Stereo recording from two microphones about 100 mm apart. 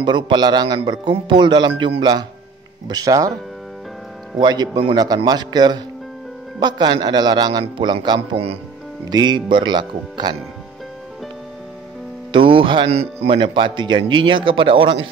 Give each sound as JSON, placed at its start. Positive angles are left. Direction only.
{"t": 0.0, "sound": "speech", "side_deg": -50}
{"t": 2.9, "sound": "speech", "side_deg": -35}
{"t": 4.4, "sound": "speech", "side_deg": -45}
{"t": 12.3, "sound": "speech", "side_deg": -55}
{"t": 12.9, "sound": "speech", "side_deg": -75}